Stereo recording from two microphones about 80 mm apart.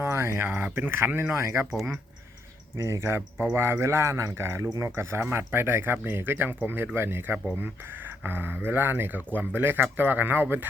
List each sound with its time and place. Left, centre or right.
0.0 s speech: right
2.7 s speech: right